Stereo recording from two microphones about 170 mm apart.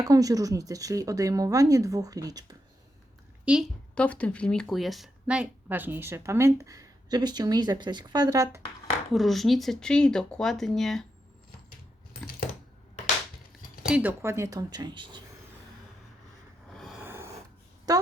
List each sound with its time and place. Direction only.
0.0 s speech: 20° right (ahead or behind)
3.4 s a woman's voice: 5° right (ahead or behind)
3.9 s speech: 10° left (ahead or behind); by 8.6 s 20° right (ahead or behind)
9.1 s speech: centre (ahead or behind)
13.8 s speech: 10° right (ahead or behind); by 15.2 s 25° right (ahead or behind)
16.6 s a sound: centre (ahead or behind)
17.0 s snort: 15° right (ahead or behind)
17.9 s a woman's voice: 20° right (ahead or behind)